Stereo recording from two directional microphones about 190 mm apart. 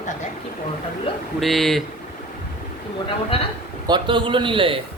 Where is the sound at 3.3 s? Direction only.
30° left (ahead or behind).